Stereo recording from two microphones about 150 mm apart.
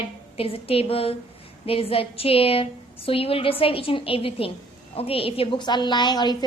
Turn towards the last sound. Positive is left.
turn(degrees=30)  # may be behind; listen again after turning